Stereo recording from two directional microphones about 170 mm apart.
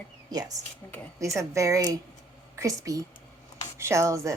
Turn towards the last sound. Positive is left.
turn(degrees=-20)  # may be behind; listen again after turning